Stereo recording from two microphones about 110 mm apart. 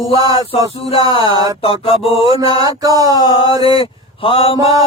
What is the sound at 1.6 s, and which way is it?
Music, 55° left (ahead or behind).